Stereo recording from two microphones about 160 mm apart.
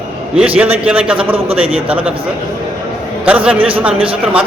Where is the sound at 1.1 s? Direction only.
35° right (ahead or behind).